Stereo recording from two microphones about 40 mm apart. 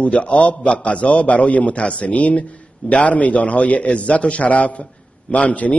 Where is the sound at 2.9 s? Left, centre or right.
Left.